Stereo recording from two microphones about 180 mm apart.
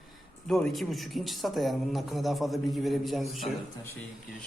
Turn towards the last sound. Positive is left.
turn(degrees=0)  # may be behind; listen again after turning